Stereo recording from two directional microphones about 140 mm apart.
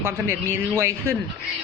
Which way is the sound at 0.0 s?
15° right (ahead or behind).